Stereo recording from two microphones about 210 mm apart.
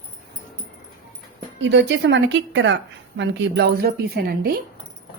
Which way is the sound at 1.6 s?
60° right (ahead or behind).